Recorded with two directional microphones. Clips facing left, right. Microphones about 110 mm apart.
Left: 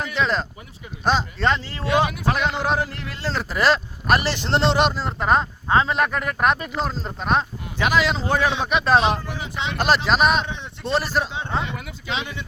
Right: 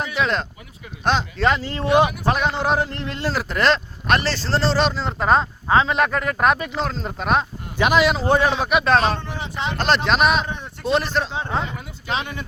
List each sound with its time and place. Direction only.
0.0 s a sound: 10° right (ahead or behind)
1.0 s speech: centre (ahead or behind)
1.6 s a man's voice: 20° right (ahead or behind)
3.5 s speech: 5° left (ahead or behind)
4.9 s speech: 5° left (ahead or behind)
7.8 s a man's voice: 20° right (ahead or behind)
8.8 s speech: 5° left (ahead or behind)
12.1 s speech: 40° right (ahead or behind)